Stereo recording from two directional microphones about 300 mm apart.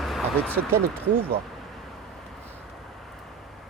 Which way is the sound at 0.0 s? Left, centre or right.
Centre.